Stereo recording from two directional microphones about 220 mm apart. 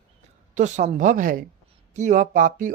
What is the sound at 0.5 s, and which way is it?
Speech, 35° right (ahead or behind).